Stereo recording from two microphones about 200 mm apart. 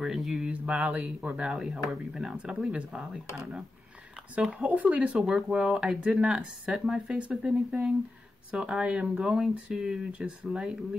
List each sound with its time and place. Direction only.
0.0 s speech: centre (ahead or behind)
4.4 s speech: 5° right (ahead or behind)